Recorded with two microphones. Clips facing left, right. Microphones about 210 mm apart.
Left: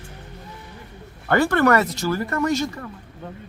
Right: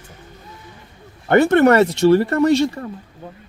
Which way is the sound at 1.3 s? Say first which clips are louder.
Right 5 dB; 25° right (ahead or behind).